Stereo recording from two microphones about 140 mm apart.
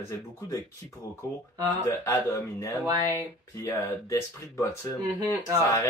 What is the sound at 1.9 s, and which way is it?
Speech, 20° left (ahead or behind).